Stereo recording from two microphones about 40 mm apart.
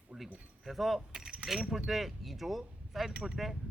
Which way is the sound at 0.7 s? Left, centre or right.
Centre.